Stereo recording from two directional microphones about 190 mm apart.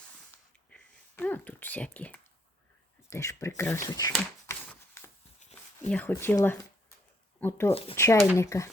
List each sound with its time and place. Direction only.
0.7 s speech: 10° left (ahead or behind)
4.4 s a sound: 10° left (ahead or behind)
5.4 s a sound: 40° left (ahead or behind)
5.9 s speech: 10° left (ahead or behind)
7.7 s speech: 30° left (ahead or behind)
7.9 s speech: 15° left (ahead or behind)